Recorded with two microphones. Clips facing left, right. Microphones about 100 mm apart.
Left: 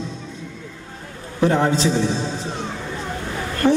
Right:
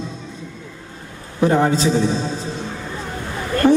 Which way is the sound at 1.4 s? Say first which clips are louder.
Right 2 dB; 10° right (ahead or behind).